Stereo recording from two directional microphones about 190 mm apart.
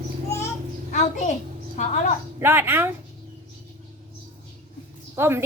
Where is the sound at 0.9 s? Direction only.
40° left (ahead or behind).